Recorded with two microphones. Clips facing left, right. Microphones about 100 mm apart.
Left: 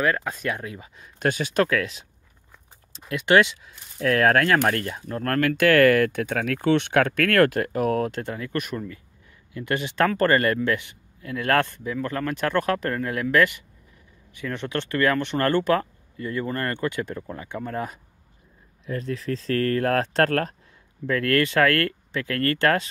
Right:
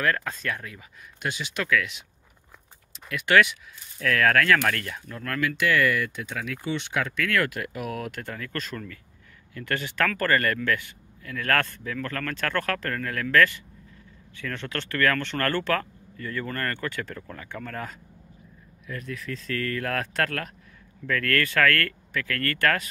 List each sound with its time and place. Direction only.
0.0 s speech: 15° left (ahead or behind)
1.2 s speech: 45° left (ahead or behind); by 17.9 s 20° left (ahead or behind)
18.9 s speech: 30° left (ahead or behind)
21.1 s speech: 25° left (ahead or behind)